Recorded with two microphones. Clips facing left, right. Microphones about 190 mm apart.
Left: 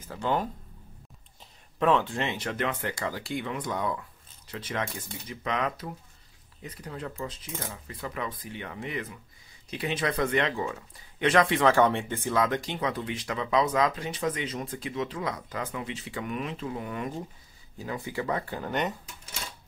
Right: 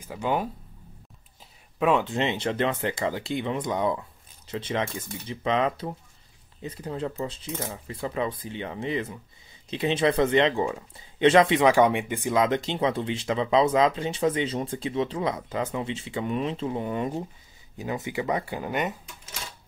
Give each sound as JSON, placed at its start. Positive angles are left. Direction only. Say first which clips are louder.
{"t": 0.1, "sound": "speech", "louder": "right 2 dB", "side_deg": -10}
{"t": 1.8, "sound": "speech", "louder": "right 2 dB", "side_deg": -10}